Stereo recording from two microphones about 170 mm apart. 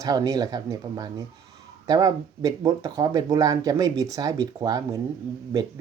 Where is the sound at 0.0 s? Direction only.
20° right (ahead or behind).